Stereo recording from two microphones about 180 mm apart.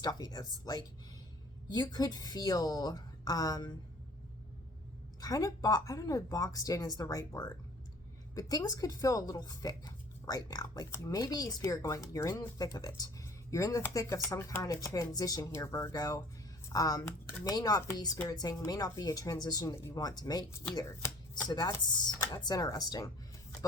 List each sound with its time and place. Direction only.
0.0 s speech: 25° left (ahead or behind)
5.2 s speech: 20° left (ahead or behind)